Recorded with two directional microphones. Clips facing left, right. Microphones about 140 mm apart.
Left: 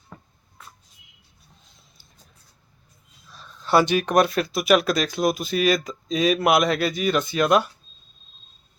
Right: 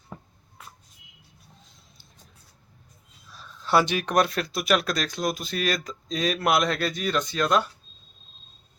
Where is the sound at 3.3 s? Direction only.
5° right (ahead or behind).